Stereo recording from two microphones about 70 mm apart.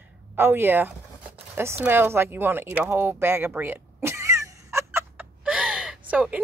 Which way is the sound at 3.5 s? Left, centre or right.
Right.